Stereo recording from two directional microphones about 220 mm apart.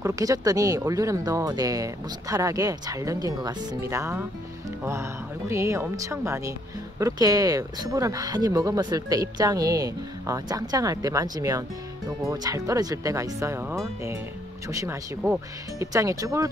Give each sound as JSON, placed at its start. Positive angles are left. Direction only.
{"t": 0.0, "sound": "speech", "side_deg": -15}
{"t": 5.5, "sound": "speech", "side_deg": -10}